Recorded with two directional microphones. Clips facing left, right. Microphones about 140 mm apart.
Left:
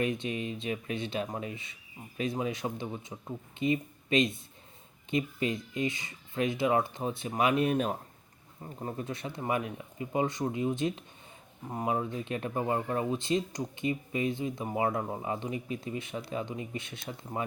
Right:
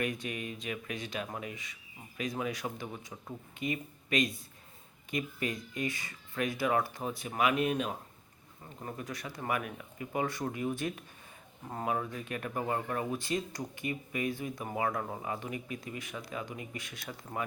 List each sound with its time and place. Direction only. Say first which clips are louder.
0.0 s speech: left 4 dB; 25° left (ahead or behind)
8.8 s speech: left 4 dB; 30° left (ahead or behind)